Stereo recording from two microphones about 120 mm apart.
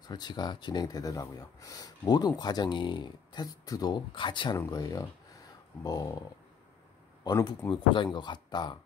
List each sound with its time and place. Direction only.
0.0 s speech: 35° left (ahead or behind)
4.6 s speech: 30° left (ahead or behind)
7.2 s speech: 30° left (ahead or behind)
7.7 s speech: 45° left (ahead or behind)